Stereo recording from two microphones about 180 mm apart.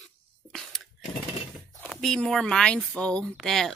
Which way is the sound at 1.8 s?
Centre (ahead or behind).